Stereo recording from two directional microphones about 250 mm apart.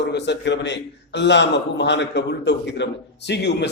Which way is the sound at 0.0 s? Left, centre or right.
Left.